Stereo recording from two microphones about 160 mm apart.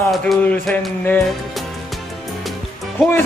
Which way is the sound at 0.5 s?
10° left (ahead or behind).